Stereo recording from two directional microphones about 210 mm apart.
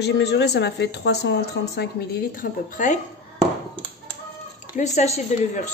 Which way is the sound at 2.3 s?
40° left (ahead or behind).